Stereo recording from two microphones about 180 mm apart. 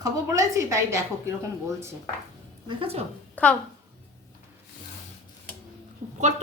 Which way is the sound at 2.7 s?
30° right (ahead or behind).